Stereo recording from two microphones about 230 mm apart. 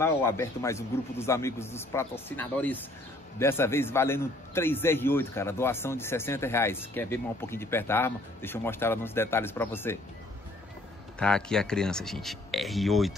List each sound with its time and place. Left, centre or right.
0.0 s a man's voice: centre
11.1 s speech: centre